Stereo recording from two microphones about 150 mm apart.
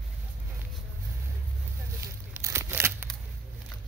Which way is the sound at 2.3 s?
20° right (ahead or behind).